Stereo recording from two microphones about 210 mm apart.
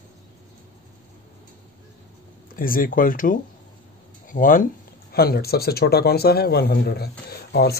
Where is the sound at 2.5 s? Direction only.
40° left (ahead or behind).